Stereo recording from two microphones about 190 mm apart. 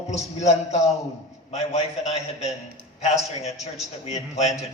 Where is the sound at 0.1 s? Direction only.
35° left (ahead or behind).